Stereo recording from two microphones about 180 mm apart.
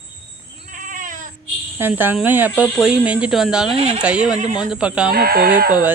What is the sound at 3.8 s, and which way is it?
Speech, 35° right (ahead or behind).